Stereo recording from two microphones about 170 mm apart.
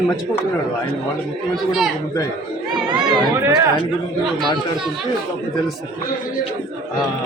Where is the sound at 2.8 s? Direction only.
25° right (ahead or behind).